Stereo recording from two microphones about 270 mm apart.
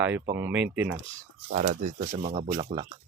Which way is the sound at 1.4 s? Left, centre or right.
Right.